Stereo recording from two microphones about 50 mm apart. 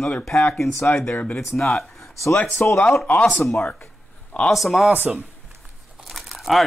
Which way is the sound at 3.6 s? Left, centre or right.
Left.